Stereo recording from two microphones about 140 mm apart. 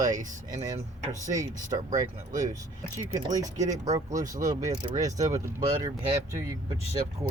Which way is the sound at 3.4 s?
25° right (ahead or behind).